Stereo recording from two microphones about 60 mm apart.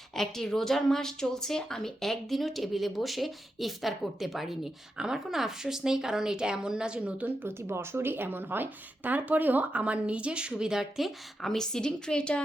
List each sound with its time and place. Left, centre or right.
0.2 s a woman's voice: centre
7.4 s a woman's voice: right; by 11.5 s centre
11.5 s a woman's voice: centre